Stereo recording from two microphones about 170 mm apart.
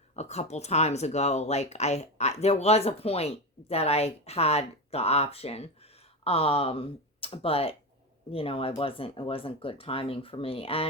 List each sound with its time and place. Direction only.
0.2 s speech: 40° left (ahead or behind)